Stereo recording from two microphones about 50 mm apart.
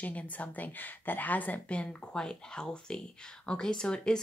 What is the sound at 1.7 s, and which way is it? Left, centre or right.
Speech, centre.